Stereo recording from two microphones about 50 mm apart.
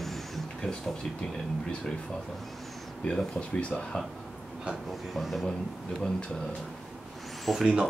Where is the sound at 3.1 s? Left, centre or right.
Centre.